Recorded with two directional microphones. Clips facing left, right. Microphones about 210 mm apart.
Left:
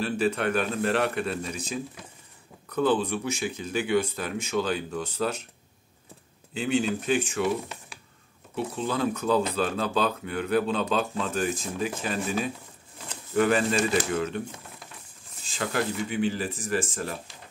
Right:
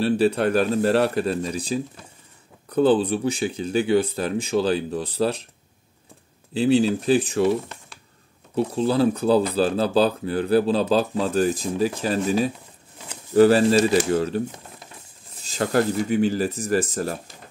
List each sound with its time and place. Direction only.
0.0 s speech: 35° right (ahead or behind)
6.5 s speech: 35° right (ahead or behind)
7.6 s computer keyboard: 5° left (ahead or behind)
8.5 s speech: 35° right (ahead or behind)
15.4 s speech: 40° right (ahead or behind)